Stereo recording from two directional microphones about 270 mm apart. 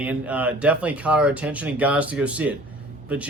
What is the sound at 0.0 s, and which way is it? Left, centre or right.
Speech, centre.